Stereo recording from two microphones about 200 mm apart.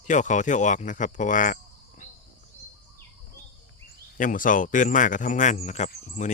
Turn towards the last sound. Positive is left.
turn(degrees=35)  # may be behind; listen again after turning